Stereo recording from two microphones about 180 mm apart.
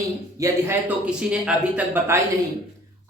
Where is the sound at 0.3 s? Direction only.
15° right (ahead or behind).